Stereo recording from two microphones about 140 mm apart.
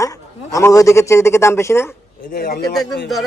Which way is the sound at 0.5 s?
25° left (ahead or behind).